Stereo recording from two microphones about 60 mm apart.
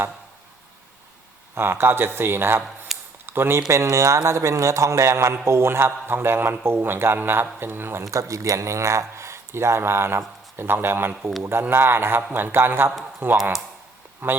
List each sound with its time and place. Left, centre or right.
1.5 s a man's voice: right
2.9 s a sound: centre
3.2 s speech: right
3.7 s a man's voice: right
8.1 s a man's voice: right